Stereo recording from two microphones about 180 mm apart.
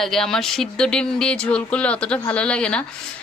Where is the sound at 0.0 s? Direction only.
Centre (ahead or behind).